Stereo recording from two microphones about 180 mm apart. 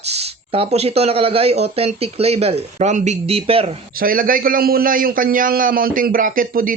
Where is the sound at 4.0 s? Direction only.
50° right (ahead or behind).